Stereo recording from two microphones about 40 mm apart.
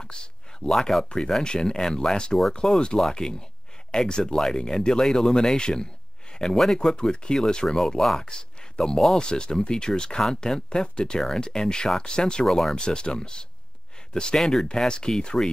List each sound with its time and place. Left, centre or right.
0.0 s a sound: left
0.7 s speech: centre
1.4 s speech: left
11.1 s speech: centre
12.4 s speech: centre
12.7 s speech: left